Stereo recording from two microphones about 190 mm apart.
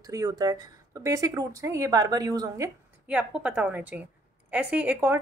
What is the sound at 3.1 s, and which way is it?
A woman's voice, 5° right (ahead or behind).